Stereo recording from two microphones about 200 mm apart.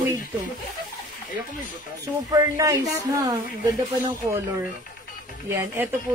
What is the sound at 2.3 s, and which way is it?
Speech, 20° right (ahead or behind).